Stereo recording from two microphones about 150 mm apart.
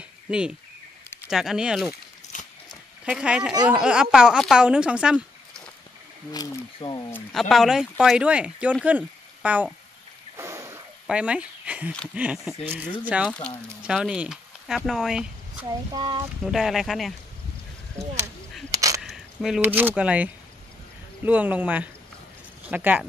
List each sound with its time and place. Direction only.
0.3 s speech: 5° right (ahead or behind)
2.3 s biting: 60° left (ahead or behind)
2.7 s a sound: 5° right (ahead or behind)
3.6 s speech: 5° right (ahead or behind)
6.3 s speech: 25° left (ahead or behind)
7.3 s speech: centre (ahead or behind)
10.3 s a sound: 20° right (ahead or behind)
11.1 s speech: 10° right (ahead or behind)
13.2 s speech: 5° left (ahead or behind)
13.8 s speech: 5° right (ahead or behind)
15.9 s speech: 30° right (ahead or behind)
16.4 s speech: centre (ahead or behind)
18.7 s a sound: 20° right (ahead or behind)
18.9 s speech: centre (ahead or behind)